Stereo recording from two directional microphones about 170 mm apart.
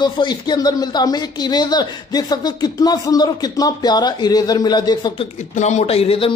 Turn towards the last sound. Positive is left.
turn(degrees=35)  # may be behind; listen again after turning